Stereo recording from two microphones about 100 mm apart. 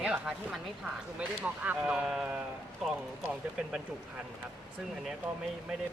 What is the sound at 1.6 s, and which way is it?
Speech, 10° right (ahead or behind).